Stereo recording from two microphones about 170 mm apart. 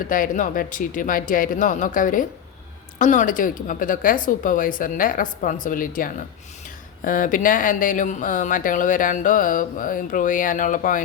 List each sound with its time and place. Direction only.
0.0 s speech: 55° left (ahead or behind)